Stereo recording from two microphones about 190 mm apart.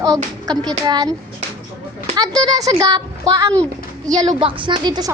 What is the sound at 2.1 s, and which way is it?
Speech, 20° right (ahead or behind).